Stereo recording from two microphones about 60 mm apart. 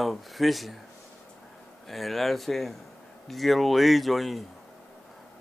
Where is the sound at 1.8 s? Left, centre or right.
Centre.